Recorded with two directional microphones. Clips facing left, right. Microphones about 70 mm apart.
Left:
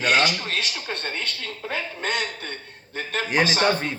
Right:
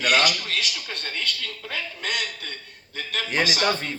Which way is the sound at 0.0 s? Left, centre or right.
Left.